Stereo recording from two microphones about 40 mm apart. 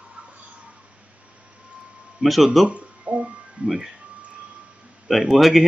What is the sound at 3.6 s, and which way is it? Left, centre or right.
Speech, centre.